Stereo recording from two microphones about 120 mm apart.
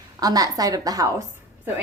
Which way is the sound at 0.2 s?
30° right (ahead or behind).